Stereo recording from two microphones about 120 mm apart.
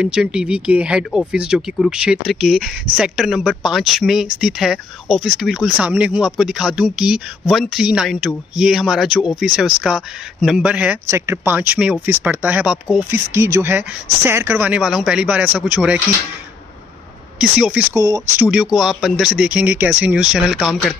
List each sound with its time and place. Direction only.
0.0 s speech: 10° right (ahead or behind)
11.1 s speech: 20° right (ahead or behind)
17.4 s speech: 10° right (ahead or behind)
17.9 s speech: 30° right (ahead or behind)
18.4 s speech: 5° right (ahead or behind)